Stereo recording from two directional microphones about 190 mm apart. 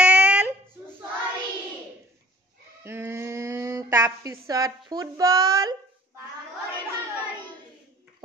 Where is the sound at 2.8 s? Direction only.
15° right (ahead or behind).